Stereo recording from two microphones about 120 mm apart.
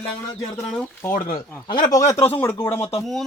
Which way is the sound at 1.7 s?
40° left (ahead or behind).